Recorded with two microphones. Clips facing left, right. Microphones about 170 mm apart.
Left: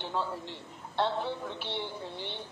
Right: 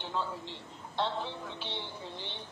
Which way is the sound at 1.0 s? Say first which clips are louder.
Left 4 dB; 10° left (ahead or behind).